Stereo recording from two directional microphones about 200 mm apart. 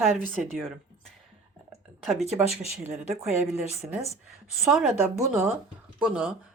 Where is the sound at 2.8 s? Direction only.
15° right (ahead or behind).